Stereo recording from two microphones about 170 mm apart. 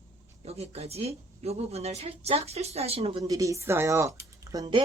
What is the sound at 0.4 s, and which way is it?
A woman's voice, 40° right (ahead or behind).